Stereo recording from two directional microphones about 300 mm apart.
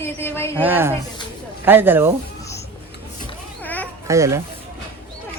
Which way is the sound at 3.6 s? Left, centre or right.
Centre.